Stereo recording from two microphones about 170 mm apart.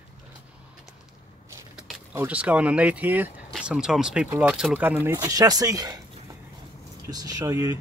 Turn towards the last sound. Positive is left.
turn(degrees=-20)  # may be behind; listen again after turning